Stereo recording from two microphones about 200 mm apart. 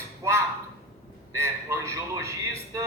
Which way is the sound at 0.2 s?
15° right (ahead or behind).